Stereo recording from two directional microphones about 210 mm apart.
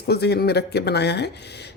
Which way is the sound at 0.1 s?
50° left (ahead or behind).